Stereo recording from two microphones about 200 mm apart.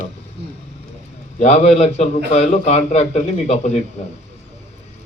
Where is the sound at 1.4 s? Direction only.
35° left (ahead or behind).